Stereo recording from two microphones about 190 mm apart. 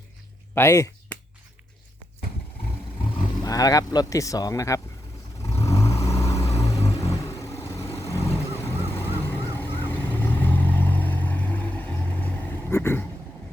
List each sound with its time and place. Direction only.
0.5 s a sound: 15° left (ahead or behind)
3.4 s speech: 20° left (ahead or behind)
5.4 s vehicle: 15° left (ahead or behind)